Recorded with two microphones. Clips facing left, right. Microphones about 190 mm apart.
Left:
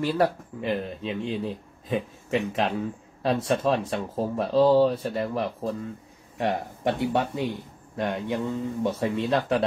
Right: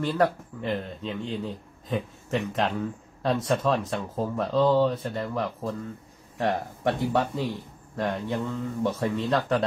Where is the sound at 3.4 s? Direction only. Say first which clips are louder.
Left 1 dB; 30° left (ahead or behind).